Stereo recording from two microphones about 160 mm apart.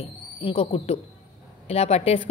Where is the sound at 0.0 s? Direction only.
35° left (ahead or behind).